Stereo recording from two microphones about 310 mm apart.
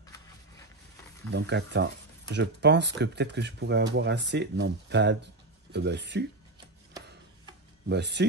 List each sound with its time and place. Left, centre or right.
1.3 s speech: right
7.9 s speech: right